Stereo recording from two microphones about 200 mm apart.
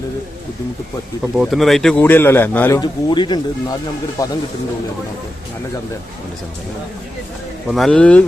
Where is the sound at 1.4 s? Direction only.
Centre (ahead or behind); by 4.3 s 15° left (ahead or behind).